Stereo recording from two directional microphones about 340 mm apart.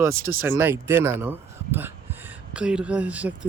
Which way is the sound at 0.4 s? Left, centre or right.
Centre.